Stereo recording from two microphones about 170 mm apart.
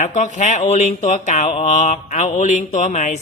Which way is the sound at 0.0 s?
45° left (ahead or behind).